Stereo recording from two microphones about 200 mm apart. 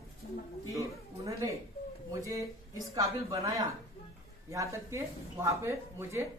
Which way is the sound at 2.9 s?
15° right (ahead or behind).